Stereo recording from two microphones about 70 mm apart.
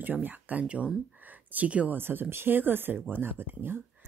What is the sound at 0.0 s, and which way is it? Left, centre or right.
Speech, right.